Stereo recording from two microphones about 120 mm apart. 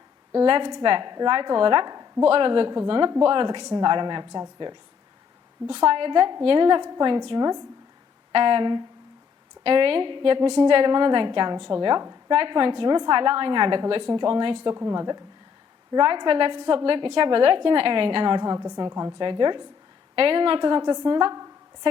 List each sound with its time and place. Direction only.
0.3 s a woman's voice: 40° right (ahead or behind)
5.7 s a woman's voice: 45° right (ahead or behind)
8.3 s a woman's voice: 45° right (ahead or behind)